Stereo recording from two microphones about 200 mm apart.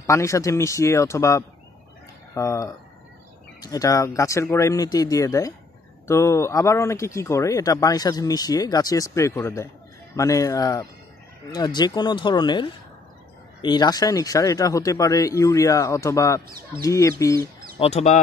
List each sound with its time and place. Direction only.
0.0 s speech: 15° left (ahead or behind)
17.7 s speech: 35° left (ahead or behind)